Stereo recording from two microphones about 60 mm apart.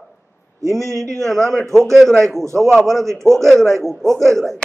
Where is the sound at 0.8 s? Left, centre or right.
Right.